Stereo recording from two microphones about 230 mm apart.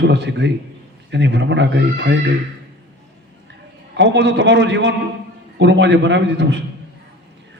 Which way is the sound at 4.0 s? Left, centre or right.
Right.